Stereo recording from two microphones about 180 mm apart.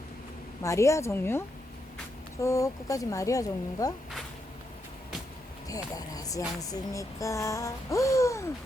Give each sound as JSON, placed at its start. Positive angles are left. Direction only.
{"t": 0.6, "sound": "speech", "side_deg": 15}
{"t": 5.6, "sound": "speech", "side_deg": 20}